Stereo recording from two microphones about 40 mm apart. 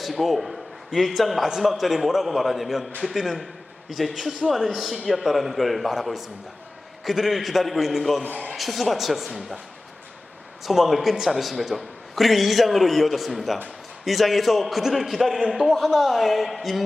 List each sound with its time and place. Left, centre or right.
0.0 s a man's voice: centre
10.7 s a man's voice: centre